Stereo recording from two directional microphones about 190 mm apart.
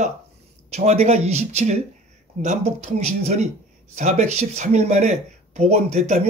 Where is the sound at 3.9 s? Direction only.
35° right (ahead or behind).